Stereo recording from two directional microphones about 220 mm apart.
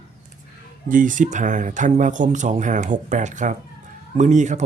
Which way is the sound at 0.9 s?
35° right (ahead or behind).